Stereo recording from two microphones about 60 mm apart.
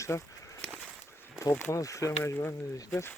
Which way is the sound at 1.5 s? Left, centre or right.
Left.